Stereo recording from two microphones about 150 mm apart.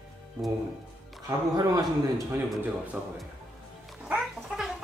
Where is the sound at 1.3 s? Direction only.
25° right (ahead or behind).